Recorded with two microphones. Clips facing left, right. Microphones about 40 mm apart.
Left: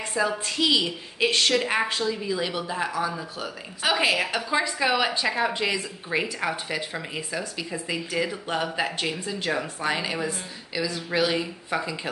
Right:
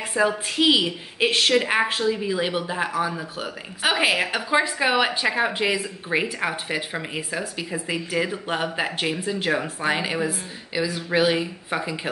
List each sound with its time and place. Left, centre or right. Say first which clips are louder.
0.1 s a woman's voice: right 4 dB; right